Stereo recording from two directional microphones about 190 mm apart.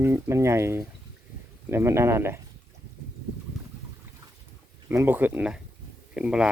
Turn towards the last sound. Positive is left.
turn(degrees=-5)  # may be behind; listen again after turning